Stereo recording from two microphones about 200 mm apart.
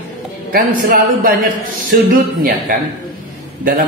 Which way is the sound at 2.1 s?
45° right (ahead or behind).